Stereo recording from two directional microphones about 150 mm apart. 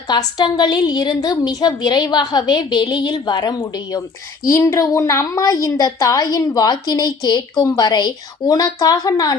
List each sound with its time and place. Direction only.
0.1 s a woman's voice: 25° left (ahead or behind)